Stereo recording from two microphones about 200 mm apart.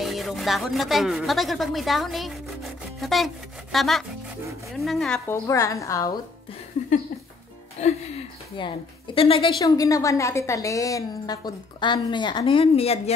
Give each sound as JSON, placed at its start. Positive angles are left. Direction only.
{"t": 0.0, "sound": "speech", "side_deg": 0}
{"t": 3.0, "sound": "rub", "side_deg": 0}
{"t": 3.7, "sound": "speech", "side_deg": 0}
{"t": 5.5, "sound": "a woman's voice", "side_deg": 15}
{"t": 7.8, "sound": "a woman's voice", "side_deg": 35}